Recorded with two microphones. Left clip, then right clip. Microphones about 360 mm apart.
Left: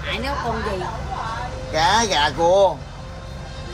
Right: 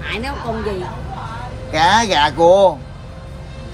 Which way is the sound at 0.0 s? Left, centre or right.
Centre.